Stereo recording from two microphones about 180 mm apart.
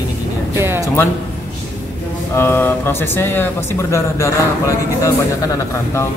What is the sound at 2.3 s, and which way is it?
Speech, 15° left (ahead or behind).